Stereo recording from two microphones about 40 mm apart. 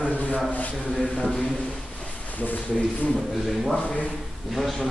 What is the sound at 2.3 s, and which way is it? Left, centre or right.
Speech, left.